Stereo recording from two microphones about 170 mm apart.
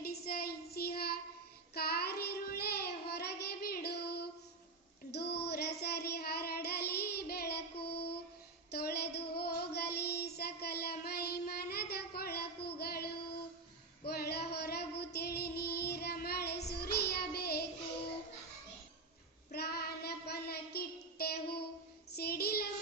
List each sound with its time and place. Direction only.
0.0 s child singing: 60° left (ahead or behind)
8.7 s female singing: 70° left (ahead or behind)
9.3 s child singing: 65° left (ahead or behind)
14.0 s female singing: 70° left (ahead or behind)
19.5 s child singing: 70° left (ahead or behind)